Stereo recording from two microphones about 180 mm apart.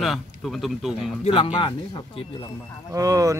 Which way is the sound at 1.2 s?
30° left (ahead or behind).